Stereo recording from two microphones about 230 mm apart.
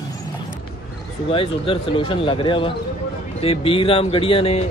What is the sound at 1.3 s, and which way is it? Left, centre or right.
Speech, left.